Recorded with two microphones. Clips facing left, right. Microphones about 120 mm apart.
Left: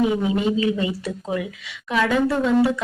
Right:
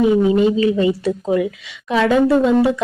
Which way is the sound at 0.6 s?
30° right (ahead or behind).